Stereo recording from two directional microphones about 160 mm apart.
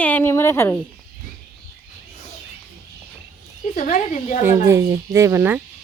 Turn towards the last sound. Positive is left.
turn(degrees=-10)  # may be behind; listen again after turning